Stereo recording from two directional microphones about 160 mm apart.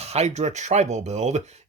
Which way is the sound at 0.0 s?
40° right (ahead or behind).